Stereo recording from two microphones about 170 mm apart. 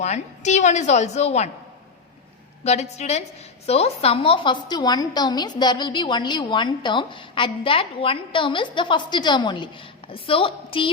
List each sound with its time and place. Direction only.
0.0 s a woman's voice: 40° left (ahead or behind)
2.6 s a woman's voice: 40° left (ahead or behind)